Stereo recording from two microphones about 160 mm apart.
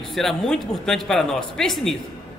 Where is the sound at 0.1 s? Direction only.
Centre (ahead or behind).